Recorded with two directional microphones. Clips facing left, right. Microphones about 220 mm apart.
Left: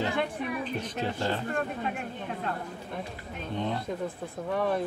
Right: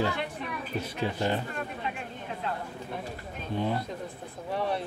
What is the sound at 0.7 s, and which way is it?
Speech, 10° right (ahead or behind).